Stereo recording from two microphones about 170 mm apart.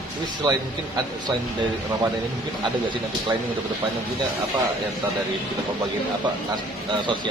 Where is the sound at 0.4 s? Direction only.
25° right (ahead or behind).